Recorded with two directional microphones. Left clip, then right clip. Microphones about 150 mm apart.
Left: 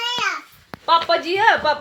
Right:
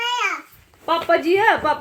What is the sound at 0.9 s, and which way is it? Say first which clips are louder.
Speech: left 4 dB; 90° right.